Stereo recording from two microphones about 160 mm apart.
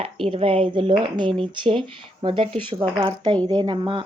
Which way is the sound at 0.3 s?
35° right (ahead or behind).